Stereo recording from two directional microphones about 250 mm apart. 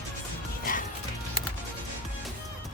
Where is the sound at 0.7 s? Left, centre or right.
Left.